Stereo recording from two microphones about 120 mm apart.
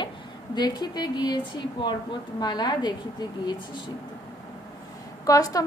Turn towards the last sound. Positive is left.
turn(degrees=30)  # may be behind; listen again after turning